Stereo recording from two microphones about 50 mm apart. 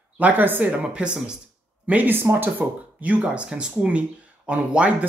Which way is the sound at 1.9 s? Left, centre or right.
Right.